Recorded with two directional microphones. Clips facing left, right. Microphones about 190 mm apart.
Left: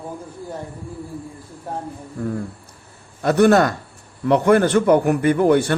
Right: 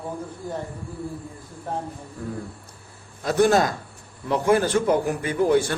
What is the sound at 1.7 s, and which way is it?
Speech, 10° left (ahead or behind).